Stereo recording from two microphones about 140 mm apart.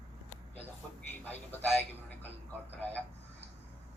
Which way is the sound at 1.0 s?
10° left (ahead or behind).